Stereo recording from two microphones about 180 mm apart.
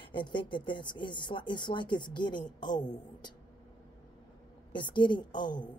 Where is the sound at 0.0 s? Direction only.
25° left (ahead or behind).